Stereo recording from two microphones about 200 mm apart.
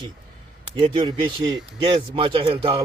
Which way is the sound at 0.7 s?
25° right (ahead or behind).